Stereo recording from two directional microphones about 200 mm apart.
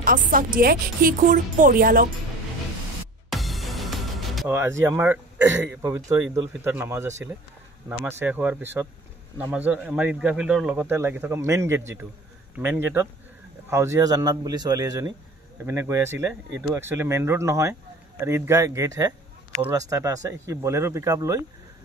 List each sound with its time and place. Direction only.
0.0 s a woman's voice: 45° right (ahead or behind)
3.3 s music: centre (ahead or behind)
4.5 s a man's voice: 15° right (ahead or behind)